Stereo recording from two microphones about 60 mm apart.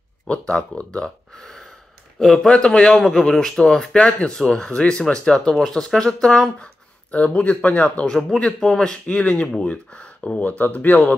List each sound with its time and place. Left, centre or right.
0.3 s speech: left
7.1 s speech: left
8.1 s speech: centre; by 11.1 s left